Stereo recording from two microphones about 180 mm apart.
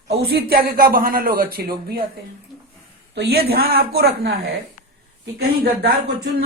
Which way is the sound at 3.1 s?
65° right (ahead or behind).